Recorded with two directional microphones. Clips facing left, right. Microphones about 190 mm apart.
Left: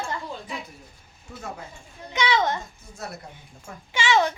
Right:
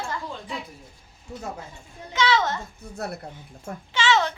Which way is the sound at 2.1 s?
15° left (ahead or behind).